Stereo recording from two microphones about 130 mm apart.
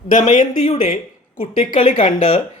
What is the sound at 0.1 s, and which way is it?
Speech, 75° left (ahead or behind).